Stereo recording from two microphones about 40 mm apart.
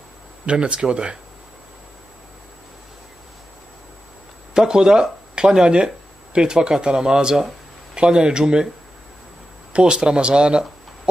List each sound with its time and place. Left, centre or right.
0.5 s speech: right
4.6 s speech: centre
9.7 s speech: right